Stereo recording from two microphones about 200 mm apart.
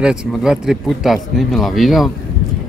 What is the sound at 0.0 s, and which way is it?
Speech, 5° right (ahead or behind).